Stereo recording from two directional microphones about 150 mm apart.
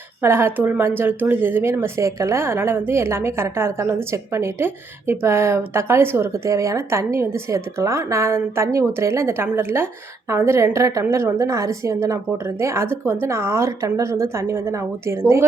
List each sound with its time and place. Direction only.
0.2 s a woman's voice: 15° right (ahead or behind)